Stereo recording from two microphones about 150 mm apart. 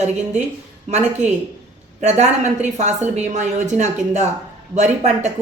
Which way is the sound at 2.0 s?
50° right (ahead or behind).